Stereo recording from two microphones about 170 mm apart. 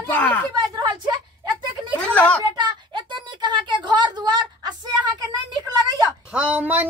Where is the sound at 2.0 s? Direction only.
5° left (ahead or behind).